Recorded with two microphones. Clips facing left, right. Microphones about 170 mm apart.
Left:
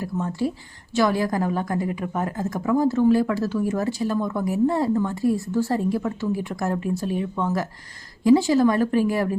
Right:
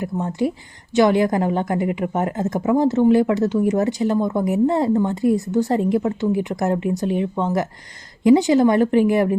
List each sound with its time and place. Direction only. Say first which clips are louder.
0.0 s a woman's voice: right 3 dB; 20° right (ahead or behind)